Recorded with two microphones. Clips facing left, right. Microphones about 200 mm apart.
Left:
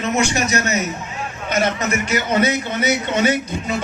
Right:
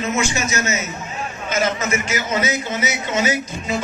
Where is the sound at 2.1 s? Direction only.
60° left (ahead or behind).